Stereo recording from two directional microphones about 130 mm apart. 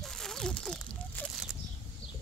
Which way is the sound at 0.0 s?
5° left (ahead or behind).